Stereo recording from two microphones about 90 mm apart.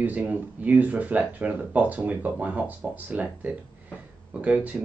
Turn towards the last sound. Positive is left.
turn(degrees=-15)  # may be behind; listen again after turning